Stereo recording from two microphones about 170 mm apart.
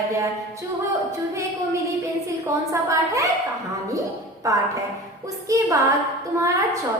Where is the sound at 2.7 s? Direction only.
20° right (ahead or behind).